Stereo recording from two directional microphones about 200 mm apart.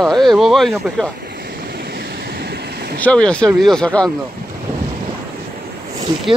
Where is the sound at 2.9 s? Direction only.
5° left (ahead or behind).